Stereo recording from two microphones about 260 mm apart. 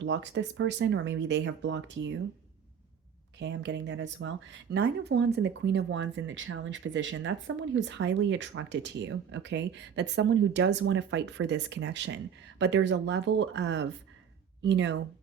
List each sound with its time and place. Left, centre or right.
0.0 s speech: right
3.3 s speech: right